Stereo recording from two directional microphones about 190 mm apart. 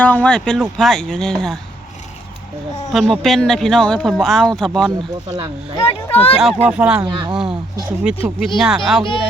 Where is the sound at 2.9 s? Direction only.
Centre (ahead or behind).